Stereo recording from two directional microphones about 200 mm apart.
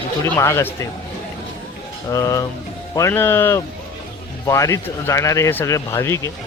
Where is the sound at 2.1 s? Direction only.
15° left (ahead or behind).